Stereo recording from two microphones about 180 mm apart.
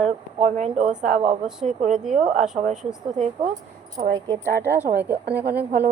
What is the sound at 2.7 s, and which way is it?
Speech, 5° right (ahead or behind).